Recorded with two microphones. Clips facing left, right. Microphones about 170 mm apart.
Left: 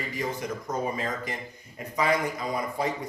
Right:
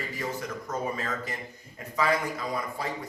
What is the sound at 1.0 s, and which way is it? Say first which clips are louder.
A man's voice: left 2 dB; 15° left (ahead or behind).